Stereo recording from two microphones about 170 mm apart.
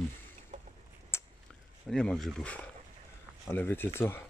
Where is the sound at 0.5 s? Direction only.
40° right (ahead or behind).